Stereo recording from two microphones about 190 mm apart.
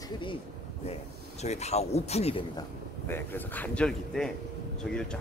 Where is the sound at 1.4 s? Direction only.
35° left (ahead or behind).